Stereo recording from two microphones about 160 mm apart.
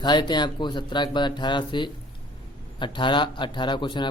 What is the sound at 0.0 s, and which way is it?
A man's voice, 25° left (ahead or behind).